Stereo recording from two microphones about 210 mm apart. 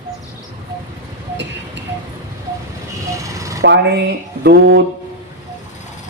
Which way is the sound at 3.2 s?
15° right (ahead or behind).